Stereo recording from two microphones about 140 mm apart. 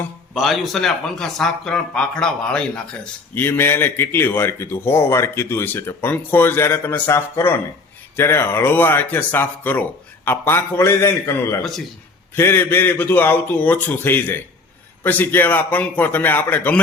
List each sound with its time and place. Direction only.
0.3 s a man's voice: centre (ahead or behind)